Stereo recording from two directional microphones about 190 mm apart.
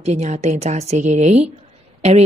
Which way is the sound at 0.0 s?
35° right (ahead or behind).